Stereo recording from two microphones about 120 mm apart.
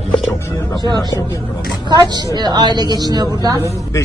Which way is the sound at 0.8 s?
35° right (ahead or behind).